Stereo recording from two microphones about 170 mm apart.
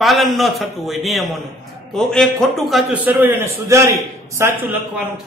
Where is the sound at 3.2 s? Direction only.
15° right (ahead or behind).